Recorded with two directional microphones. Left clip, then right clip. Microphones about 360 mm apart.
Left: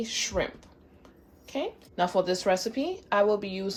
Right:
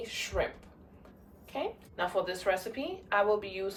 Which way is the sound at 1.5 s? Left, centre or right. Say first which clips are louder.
Left 4 dB; centre.